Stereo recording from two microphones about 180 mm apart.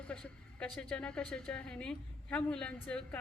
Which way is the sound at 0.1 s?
5° left (ahead or behind).